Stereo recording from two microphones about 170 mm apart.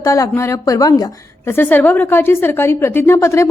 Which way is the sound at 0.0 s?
20° left (ahead or behind).